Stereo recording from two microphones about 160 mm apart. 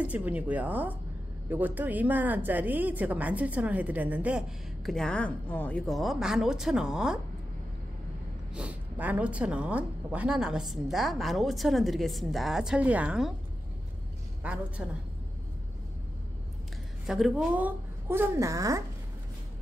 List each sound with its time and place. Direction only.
0.0 s speech: 10° right (ahead or behind)
8.5 s a woman's voice: 10° right (ahead or behind)
14.4 s speech: 10° right (ahead or behind)
17.0 s speech: centre (ahead or behind); by 18.8 s 20° right (ahead or behind)